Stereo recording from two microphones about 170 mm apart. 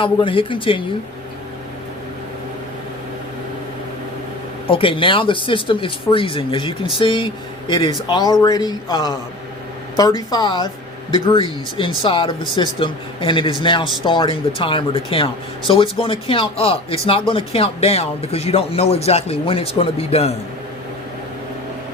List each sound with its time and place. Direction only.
0.0 s a man's voice: 30° left (ahead or behind)
4.7 s a man's voice: 30° left (ahead or behind)